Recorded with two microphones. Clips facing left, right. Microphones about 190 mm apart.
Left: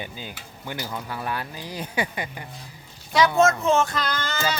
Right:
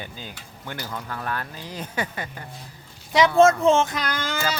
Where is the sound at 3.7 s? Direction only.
20° right (ahead or behind).